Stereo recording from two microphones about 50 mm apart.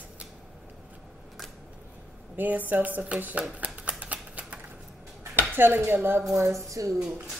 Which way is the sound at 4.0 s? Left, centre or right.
Right.